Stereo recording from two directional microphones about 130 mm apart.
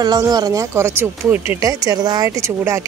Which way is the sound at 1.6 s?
30° right (ahead or behind).